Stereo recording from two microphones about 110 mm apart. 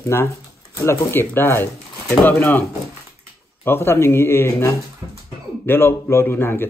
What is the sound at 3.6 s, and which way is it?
Speech, 20° left (ahead or behind).